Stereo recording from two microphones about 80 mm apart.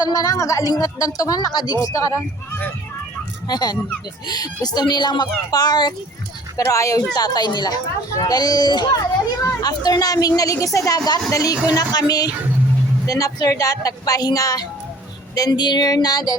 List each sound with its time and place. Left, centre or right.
0.0 s a woman's voice: left
1.5 s speech: left
1.8 s speech: left
3.4 s speech: left
6.7 s speech: left
7.1 s speech: left
8.1 s speech: left
9.4 s a woman's voice: left
11.7 s a woman's voice: left